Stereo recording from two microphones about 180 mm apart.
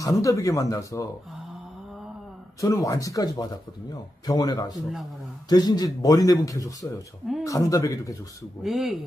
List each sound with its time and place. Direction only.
0.0 s speech: 20° left (ahead or behind)
2.6 s speech: 20° left (ahead or behind)
8.6 s speech: centre (ahead or behind)